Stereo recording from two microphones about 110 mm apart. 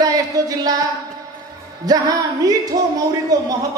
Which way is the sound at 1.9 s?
35° right (ahead or behind).